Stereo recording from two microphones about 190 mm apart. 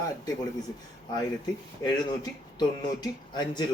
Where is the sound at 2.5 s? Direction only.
20° left (ahead or behind).